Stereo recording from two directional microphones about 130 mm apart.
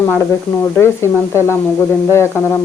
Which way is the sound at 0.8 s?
20° left (ahead or behind).